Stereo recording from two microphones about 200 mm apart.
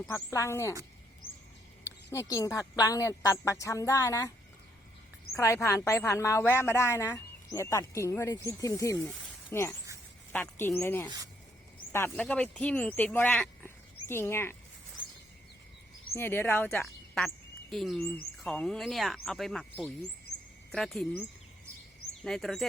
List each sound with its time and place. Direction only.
0.1 s a woman's voice: 15° left (ahead or behind)
2.0 s a woman's voice: 15° left (ahead or behind)
5.3 s a woman's voice: 15° left (ahead or behind)
16.1 s a woman's voice: 10° left (ahead or behind)
16.8 s speech: centre (ahead or behind)
22.2 s speech: centre (ahead or behind)